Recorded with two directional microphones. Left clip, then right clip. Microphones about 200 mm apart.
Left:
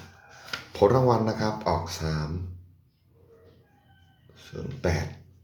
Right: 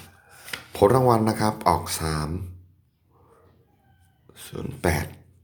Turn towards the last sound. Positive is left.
turn(degrees=-40)  # may be behind; listen again after turning